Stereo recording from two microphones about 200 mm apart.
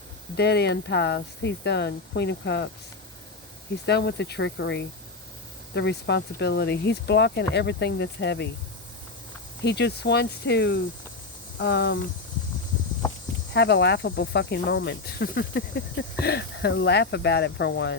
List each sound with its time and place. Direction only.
0.3 s speech: 55° left (ahead or behind)
3.8 s speech: 55° left (ahead or behind)
9.6 s speech: 55° left (ahead or behind)
13.5 s speech: 60° left (ahead or behind)